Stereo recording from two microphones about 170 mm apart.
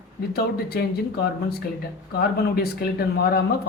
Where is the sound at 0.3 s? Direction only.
65° left (ahead or behind).